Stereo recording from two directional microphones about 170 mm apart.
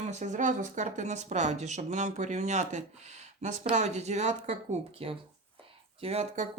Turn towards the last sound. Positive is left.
turn(degrees=-40)  # may be behind; listen again after turning